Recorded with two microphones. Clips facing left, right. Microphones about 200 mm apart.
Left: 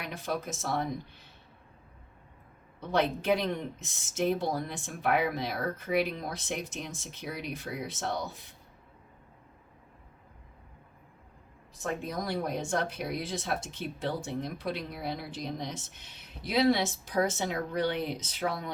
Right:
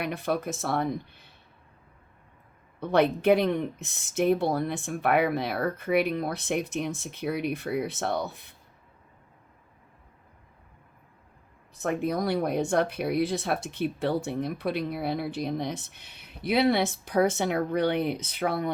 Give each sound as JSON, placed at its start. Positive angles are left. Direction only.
{"t": 0.0, "sound": "speech", "side_deg": -60}
{"t": 2.9, "sound": "speech", "side_deg": -60}
{"t": 11.8, "sound": "speech", "side_deg": -65}